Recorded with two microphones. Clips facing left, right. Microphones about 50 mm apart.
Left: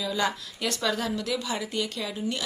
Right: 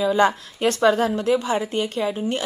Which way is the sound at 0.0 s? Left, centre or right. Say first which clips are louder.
Right 10 dB; right.